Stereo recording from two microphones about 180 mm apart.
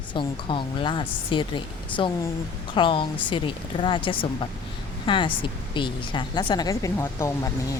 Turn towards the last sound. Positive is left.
turn(degrees=15)  # may be behind; listen again after turning